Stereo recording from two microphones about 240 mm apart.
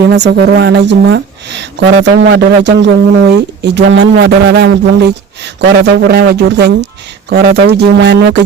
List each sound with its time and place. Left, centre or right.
0.1 s a woman's voice: right